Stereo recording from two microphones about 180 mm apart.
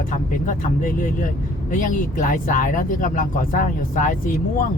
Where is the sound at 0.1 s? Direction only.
45° left (ahead or behind).